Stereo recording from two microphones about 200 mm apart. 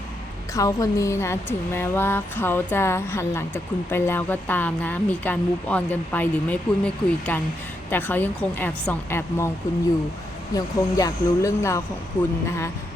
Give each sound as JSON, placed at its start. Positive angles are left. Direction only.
{"t": 0.5, "sound": "speech", "side_deg": 15}
{"t": 10.5, "sound": "speech", "side_deg": 15}